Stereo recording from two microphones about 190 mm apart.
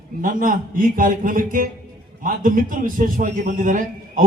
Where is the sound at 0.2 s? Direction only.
45° right (ahead or behind).